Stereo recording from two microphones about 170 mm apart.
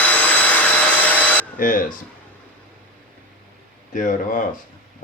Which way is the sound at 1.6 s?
55° left (ahead or behind).